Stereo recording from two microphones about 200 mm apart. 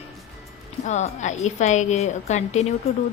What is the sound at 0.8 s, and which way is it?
A woman's voice, 35° left (ahead or behind).